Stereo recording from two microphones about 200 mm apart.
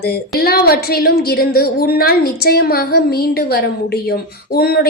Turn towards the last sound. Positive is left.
turn(degrees=50)  # may be behind; listen again after turning